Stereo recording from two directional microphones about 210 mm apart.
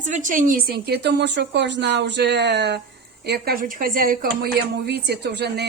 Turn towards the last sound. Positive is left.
turn(degrees=-50)  # may be behind; listen again after turning